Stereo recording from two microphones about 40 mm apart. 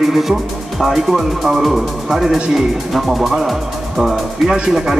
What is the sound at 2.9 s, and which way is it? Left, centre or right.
Speech, centre.